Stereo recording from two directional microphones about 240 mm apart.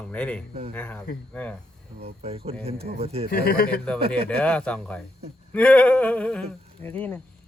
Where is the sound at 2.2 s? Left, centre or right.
Right.